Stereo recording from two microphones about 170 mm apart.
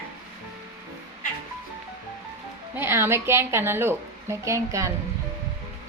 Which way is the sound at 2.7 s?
15° right (ahead or behind).